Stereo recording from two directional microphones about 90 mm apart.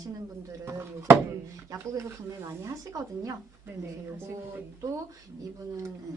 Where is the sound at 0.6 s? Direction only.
30° right (ahead or behind).